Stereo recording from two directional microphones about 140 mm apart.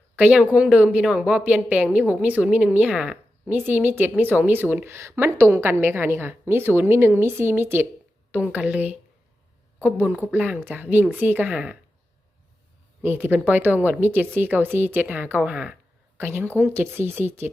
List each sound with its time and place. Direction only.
0.2 s a woman's voice: 10° right (ahead or behind)
13.0 s a woman's voice: 15° right (ahead or behind)